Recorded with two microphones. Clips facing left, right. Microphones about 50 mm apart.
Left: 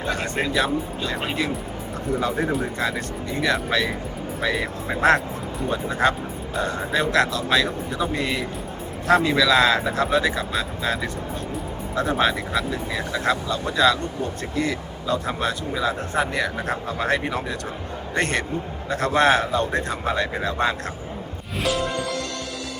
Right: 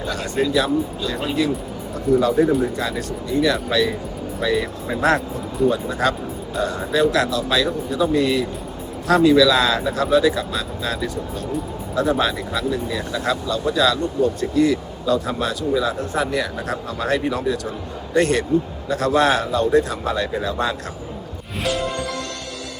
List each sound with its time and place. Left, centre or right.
0.0 s speech: left
3.2 s speech: left
4.9 s speech: left